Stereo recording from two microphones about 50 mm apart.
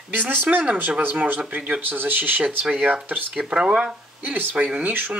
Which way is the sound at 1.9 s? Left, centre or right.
Right.